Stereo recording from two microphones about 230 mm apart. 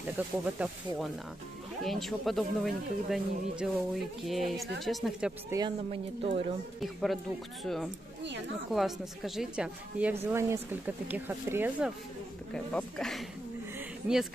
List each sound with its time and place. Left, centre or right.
0.2 s speech: centre
1.8 s speech: centre
5.5 s speech: right
6.8 s speech: centre
12.5 s speech: centre
13.7 s a sound: centre